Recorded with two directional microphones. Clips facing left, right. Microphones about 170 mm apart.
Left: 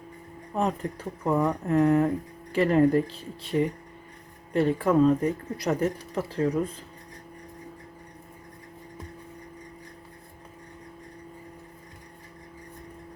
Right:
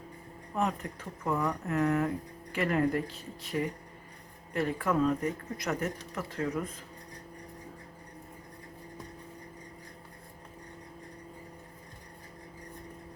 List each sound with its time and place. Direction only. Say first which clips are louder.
0.5 s speech: left 4 dB; 30° left (ahead or behind)